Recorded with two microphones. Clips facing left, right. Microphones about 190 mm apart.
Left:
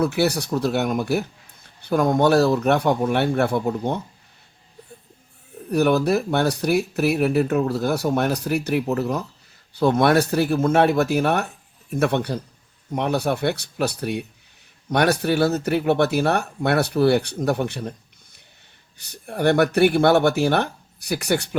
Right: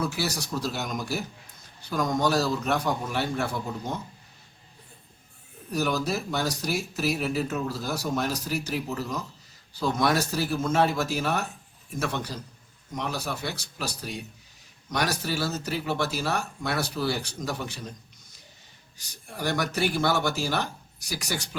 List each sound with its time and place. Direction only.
0.0 s speech: 60° left (ahead or behind)
5.7 s speech: 60° left (ahead or behind)